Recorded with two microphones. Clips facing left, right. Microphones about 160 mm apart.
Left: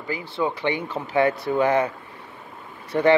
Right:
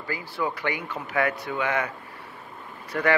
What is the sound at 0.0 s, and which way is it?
Speech, 20° left (ahead or behind).